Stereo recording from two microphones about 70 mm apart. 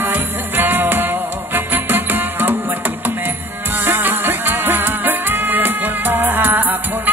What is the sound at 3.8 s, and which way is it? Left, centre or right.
Music, right.